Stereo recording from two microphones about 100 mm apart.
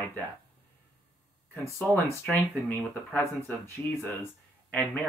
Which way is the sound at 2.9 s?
15° left (ahead or behind).